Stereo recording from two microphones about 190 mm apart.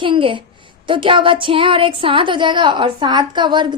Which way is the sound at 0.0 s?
25° right (ahead or behind).